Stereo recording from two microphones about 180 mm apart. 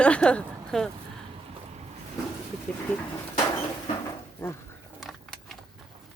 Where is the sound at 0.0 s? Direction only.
5° left (ahead or behind).